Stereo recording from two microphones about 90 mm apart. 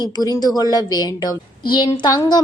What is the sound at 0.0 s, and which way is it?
A woman's voice, 45° left (ahead or behind).